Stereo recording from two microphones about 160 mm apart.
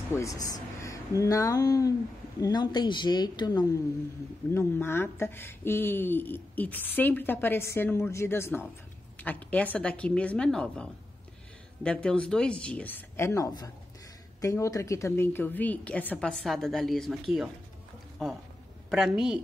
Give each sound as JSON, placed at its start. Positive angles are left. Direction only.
{"t": 0.1, "sound": "speech", "side_deg": 20}
{"t": 4.6, "sound": "a woman's voice", "side_deg": 15}